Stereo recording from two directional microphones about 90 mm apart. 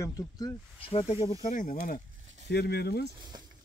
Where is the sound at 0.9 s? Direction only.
85° left.